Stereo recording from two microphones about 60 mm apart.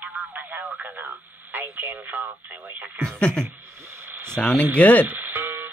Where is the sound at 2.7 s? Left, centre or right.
Right.